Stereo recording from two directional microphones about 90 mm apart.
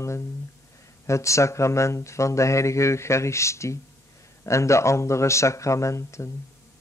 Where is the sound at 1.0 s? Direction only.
35° left (ahead or behind).